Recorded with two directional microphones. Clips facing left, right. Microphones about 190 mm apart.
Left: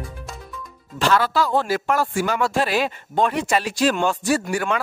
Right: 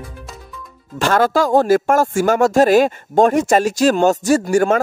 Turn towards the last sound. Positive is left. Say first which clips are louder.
# right 7 dB
turn(degrees=-45)  # may be behind; listen again after turning